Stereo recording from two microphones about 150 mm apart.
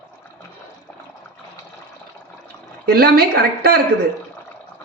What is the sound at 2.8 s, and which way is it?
Speech, 90° right.